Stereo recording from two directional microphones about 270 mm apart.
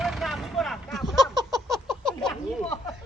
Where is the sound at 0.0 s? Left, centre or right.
Centre.